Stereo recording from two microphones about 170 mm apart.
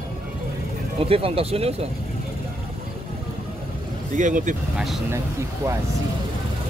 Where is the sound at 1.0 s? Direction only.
35° right (ahead or behind).